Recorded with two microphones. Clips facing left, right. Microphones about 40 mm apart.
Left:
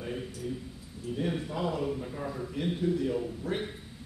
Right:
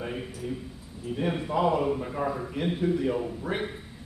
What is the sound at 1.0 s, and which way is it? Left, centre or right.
A man's voice, right.